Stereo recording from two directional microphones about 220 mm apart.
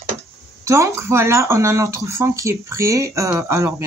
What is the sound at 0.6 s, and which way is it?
Speech, 15° right (ahead or behind).